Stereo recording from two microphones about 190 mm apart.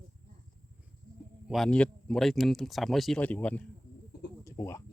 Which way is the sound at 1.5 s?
Centre (ahead or behind).